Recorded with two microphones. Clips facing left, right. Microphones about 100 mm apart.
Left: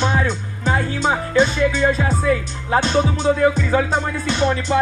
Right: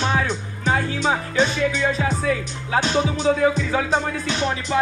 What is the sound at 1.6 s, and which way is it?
Music, 35° left (ahead or behind).